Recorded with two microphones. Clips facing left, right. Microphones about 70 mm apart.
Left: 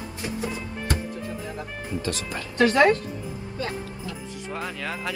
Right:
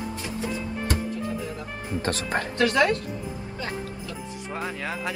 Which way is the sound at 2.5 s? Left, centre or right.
Left.